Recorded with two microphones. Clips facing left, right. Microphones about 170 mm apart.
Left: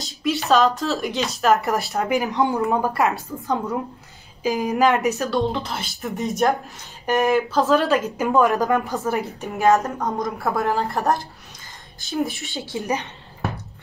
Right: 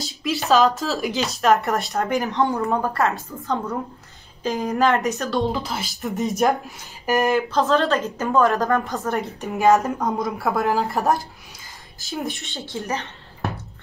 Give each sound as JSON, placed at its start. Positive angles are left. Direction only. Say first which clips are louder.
{"t": 0.0, "sound": "speech", "louder": "left 2 dB", "side_deg": 0}
{"t": 2.3, "sound": "a woman's voice", "louder": "left 1 dB", "side_deg": 15}
{"t": 4.4, "sound": "speech", "louder": "left 1 dB", "side_deg": 5}
{"t": 8.2, "sound": "a woman's voice", "louder": "even", "side_deg": 15}
{"t": 8.9, "sound": "speech", "louder": "left 1 dB", "side_deg": 0}
{"t": 12.7, "sound": "a woman's voice", "louder": "left 2 dB", "side_deg": 15}